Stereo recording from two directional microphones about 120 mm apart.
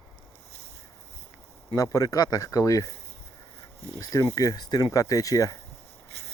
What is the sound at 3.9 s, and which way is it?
Speech, 30° left (ahead or behind).